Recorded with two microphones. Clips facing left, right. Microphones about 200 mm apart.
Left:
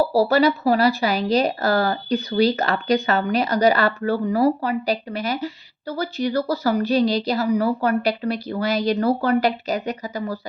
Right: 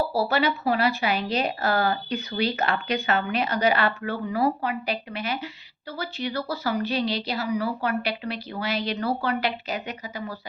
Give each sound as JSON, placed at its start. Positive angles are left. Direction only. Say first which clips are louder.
{"t": 0.0, "sound": "speech", "louder": "left 7 dB", "side_deg": 40}